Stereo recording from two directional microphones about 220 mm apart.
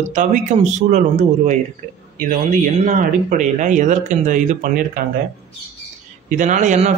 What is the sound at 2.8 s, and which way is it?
A man's voice, 35° right (ahead or behind).